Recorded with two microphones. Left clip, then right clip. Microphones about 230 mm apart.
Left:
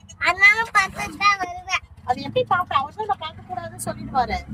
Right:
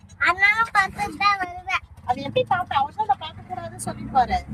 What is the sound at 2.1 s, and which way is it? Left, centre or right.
Speech, centre.